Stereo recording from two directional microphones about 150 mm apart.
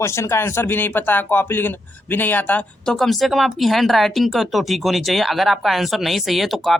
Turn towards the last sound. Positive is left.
turn(degrees=0)  # may be behind; listen again after turning